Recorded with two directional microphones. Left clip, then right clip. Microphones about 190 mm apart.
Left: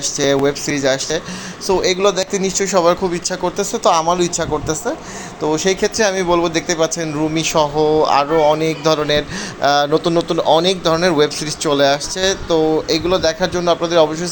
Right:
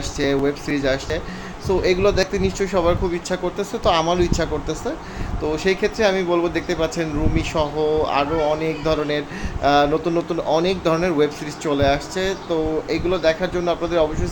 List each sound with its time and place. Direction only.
0.2 s speech: 10° left (ahead or behind)